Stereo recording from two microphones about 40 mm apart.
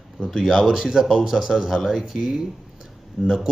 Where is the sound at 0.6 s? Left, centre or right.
Centre.